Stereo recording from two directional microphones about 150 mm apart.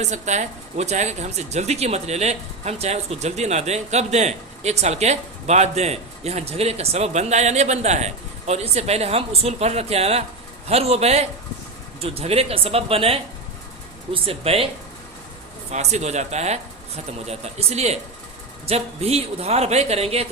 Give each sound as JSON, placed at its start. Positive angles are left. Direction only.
{"t": 0.0, "sound": "speech", "side_deg": -50}
{"t": 15.7, "sound": "speech", "side_deg": -50}